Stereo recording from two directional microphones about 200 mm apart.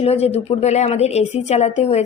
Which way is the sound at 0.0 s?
30° left (ahead or behind).